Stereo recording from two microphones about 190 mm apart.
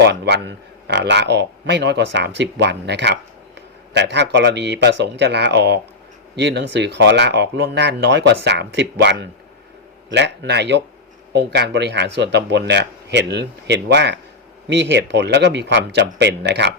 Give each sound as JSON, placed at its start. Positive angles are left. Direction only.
{"t": 0.1, "sound": "a man's voice", "side_deg": -65}